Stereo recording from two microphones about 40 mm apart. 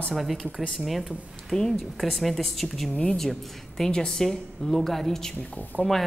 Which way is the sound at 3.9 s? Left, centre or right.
Centre.